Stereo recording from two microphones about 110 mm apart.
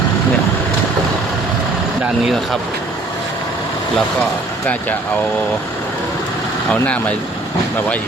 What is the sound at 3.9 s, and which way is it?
Speech, 10° left (ahead or behind).